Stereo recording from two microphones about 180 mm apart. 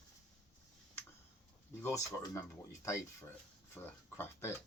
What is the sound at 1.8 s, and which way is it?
Speech, 15° left (ahead or behind).